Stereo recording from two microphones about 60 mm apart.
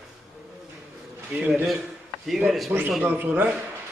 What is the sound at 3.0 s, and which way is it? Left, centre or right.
Speech, right.